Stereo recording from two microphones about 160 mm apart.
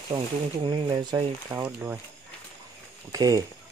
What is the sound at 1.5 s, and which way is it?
Speech, 15° right (ahead or behind).